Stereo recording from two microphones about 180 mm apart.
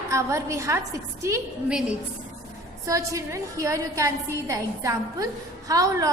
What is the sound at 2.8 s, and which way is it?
A woman's voice, 15° right (ahead or behind).